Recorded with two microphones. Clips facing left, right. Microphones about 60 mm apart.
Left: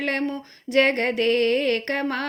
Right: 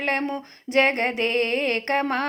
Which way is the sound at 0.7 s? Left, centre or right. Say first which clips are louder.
Left 1 dB; right.